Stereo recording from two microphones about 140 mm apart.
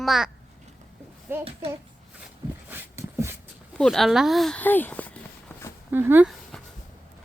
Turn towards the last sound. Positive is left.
turn(degrees=-15)  # may be behind; listen again after turning